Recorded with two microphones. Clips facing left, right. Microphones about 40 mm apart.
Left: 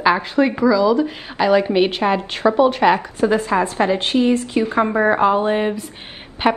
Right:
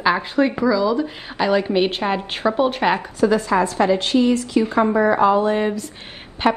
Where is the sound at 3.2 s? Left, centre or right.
Left.